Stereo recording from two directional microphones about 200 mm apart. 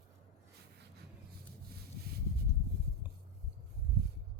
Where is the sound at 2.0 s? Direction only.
55° right (ahead or behind).